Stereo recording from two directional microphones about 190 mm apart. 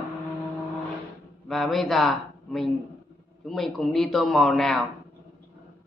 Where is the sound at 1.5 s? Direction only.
Centre (ahead or behind).